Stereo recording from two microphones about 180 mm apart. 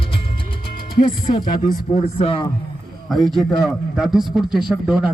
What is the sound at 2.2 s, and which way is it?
Speech, 30° left (ahead or behind).